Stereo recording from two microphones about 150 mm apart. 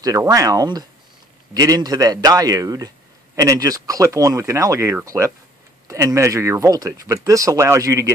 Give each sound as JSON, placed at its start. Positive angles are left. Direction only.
{"t": 0.0, "sound": "speech", "side_deg": -20}